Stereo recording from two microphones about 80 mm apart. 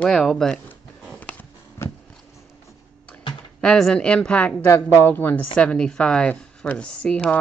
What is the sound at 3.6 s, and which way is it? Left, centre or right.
Speech, centre.